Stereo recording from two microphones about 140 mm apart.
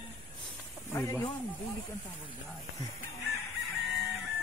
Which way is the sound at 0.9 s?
20° left (ahead or behind).